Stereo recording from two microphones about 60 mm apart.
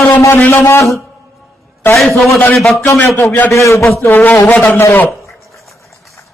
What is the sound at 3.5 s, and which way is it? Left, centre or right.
Speech, left.